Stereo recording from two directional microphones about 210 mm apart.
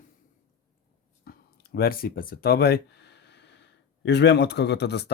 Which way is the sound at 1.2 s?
45° left (ahead or behind).